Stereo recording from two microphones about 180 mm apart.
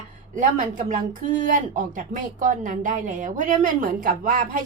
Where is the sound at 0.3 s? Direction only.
45° right (ahead or behind).